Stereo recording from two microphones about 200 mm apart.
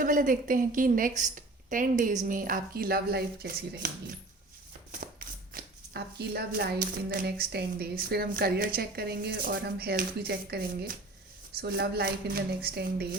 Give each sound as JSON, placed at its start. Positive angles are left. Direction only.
{"t": 0.0, "sound": "a woman's voice", "side_deg": -45}
{"t": 4.9, "sound": "a sound", "side_deg": -45}
{"t": 7.1, "sound": "a woman's voice", "side_deg": -50}